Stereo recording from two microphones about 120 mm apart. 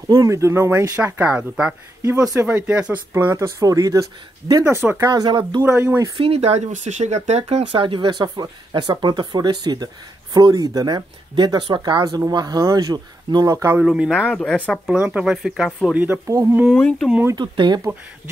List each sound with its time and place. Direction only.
0.2 s speech: 25° right (ahead or behind)
5.6 s speech: 20° right (ahead or behind)
6.1 s speech: 55° right (ahead or behind); by 13.7 s 25° right (ahead or behind)
13.7 s speech: 10° right (ahead or behind)
16.3 s speech: 20° right (ahead or behind)
16.7 s speech: 10° left (ahead or behind)
17.4 s speech: 35° right (ahead or behind)